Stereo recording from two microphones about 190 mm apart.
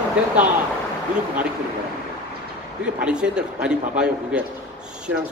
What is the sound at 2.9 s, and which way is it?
A man's voice, 5° right (ahead or behind).